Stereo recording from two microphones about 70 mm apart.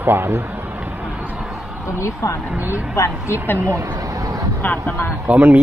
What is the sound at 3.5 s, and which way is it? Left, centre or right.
Speech, right.